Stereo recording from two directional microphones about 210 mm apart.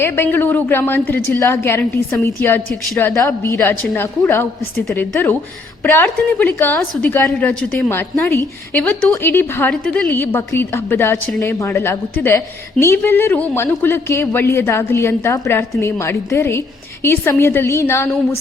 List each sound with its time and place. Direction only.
0.0 s a woman's voice: 10° left (ahead or behind)
3.2 s a woman's voice: 15° left (ahead or behind)